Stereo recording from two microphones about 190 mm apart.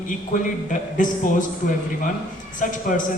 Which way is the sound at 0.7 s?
45° left (ahead or behind).